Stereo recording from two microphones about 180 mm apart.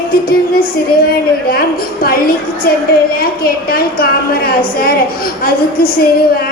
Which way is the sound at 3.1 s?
55° left (ahead or behind).